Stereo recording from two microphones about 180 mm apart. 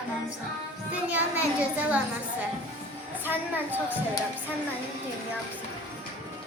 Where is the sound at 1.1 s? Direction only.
10° right (ahead or behind).